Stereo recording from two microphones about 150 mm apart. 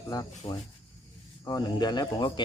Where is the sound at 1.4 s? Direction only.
25° left (ahead or behind).